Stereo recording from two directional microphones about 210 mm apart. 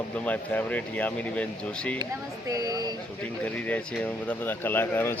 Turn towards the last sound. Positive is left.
turn(degrees=10)  # may be behind; listen again after turning